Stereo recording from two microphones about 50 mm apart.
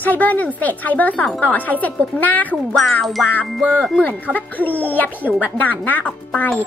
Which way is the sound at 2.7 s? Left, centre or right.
Centre.